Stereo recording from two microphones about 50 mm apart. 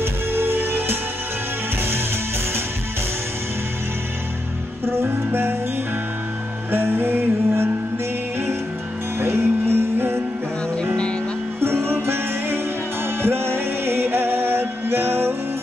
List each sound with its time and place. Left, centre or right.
0.0 s music: right
4.8 s music: right
6.7 s music: right
9.2 s music: right
11.6 s music: right